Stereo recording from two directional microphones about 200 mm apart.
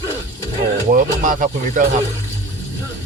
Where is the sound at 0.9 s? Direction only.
40° right (ahead or behind).